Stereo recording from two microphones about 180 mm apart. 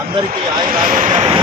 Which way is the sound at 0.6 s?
50° right (ahead or behind).